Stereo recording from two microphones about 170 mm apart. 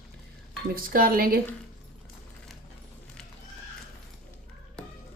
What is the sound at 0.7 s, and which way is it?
Speech, 55° right (ahead or behind).